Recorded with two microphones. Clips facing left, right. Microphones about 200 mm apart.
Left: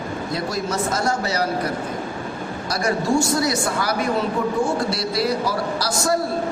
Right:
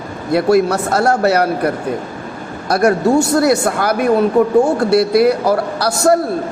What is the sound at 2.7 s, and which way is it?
Speech, 60° right (ahead or behind).